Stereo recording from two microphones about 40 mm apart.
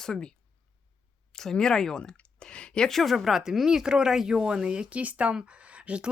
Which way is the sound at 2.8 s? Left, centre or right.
Centre.